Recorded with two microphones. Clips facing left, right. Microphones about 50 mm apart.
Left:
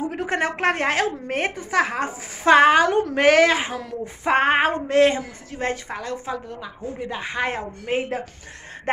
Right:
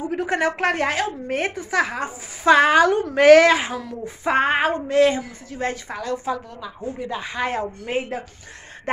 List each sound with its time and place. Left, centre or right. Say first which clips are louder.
0.1 s a woman's voice: right 2 dB; left
1.3 s a sound: right 1 dB; left
2.7 s a woman's voice: right 1 dB; left
3.7 s a sound: even; left
4.7 s a woman's voice: even; left
5.9 s a woman's voice: right 3 dB; left
8.9 s speech: right 1 dB; left